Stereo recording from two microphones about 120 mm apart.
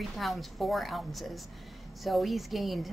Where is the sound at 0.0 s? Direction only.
Centre (ahead or behind).